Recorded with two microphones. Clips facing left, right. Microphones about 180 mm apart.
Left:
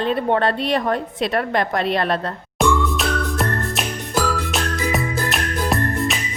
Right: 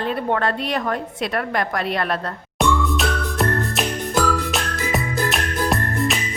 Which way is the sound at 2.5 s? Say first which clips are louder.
Left 1 dB; centre (ahead or behind).